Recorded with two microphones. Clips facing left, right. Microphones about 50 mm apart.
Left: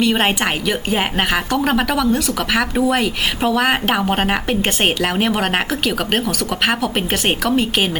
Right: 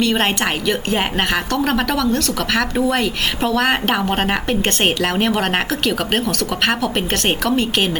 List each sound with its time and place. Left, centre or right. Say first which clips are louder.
0.0 s a woman's voice: left 1 dB; centre